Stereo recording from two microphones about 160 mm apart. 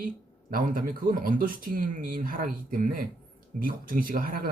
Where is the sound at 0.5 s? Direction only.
60° right (ahead or behind).